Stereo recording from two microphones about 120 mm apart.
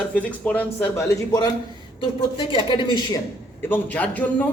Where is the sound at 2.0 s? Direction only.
45° left (ahead or behind).